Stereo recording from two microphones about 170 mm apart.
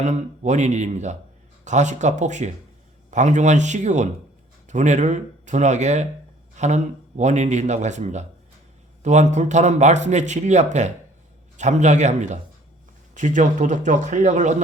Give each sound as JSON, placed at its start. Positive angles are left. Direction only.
{"t": 0.0, "sound": "speech", "side_deg": -45}